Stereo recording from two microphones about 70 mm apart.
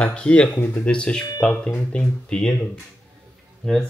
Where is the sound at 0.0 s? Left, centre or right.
Centre.